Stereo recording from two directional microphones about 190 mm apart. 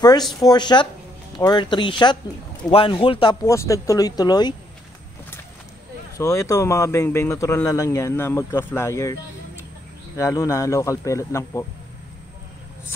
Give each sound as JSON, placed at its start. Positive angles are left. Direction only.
{"t": 0.4, "sound": "speech", "side_deg": 20}
{"t": 6.1, "sound": "speech", "side_deg": 15}
{"t": 10.1, "sound": "speech", "side_deg": 15}